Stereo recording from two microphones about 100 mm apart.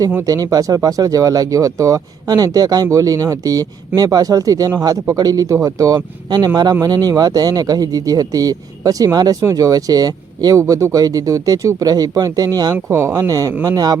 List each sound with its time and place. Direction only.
0.3 s speech: 40° right (ahead or behind)
12.7 s speech: 25° right (ahead or behind); by 14.0 s 40° right (ahead or behind)